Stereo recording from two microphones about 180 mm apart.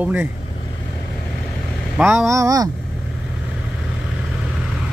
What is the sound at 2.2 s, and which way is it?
Speech, 20° right (ahead or behind).